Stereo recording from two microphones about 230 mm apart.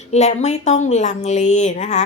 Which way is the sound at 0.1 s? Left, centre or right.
Left.